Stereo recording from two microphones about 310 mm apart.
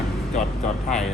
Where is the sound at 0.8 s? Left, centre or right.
Centre.